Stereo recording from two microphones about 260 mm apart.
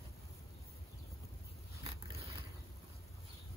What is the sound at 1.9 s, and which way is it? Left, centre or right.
Scrape, centre.